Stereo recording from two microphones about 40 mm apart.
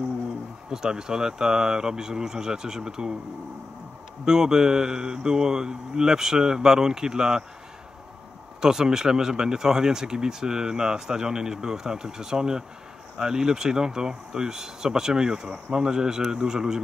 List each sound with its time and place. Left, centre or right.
0.7 s speech: centre
4.2 s speech: centre
8.5 s speech: centre